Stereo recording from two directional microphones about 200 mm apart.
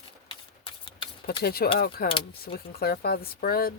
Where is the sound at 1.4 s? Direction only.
50° left (ahead or behind).